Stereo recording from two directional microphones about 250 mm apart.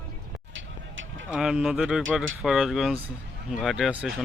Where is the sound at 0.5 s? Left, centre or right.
Right.